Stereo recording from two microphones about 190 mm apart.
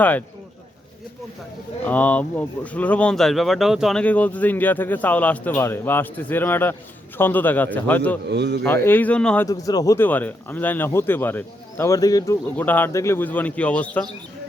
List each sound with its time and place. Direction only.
0.0 s speech: 10° left (ahead or behind)
1.8 s speech: 10° left (ahead or behind)
8.3 s a man's voice: 60° right (ahead or behind)
8.6 s speech: 10° left (ahead or behind)
9.5 s speech: 20° left (ahead or behind)